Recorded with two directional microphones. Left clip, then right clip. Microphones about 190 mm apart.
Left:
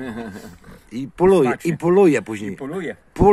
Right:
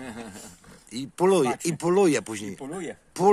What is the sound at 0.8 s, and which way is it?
Speech, centre (ahead or behind).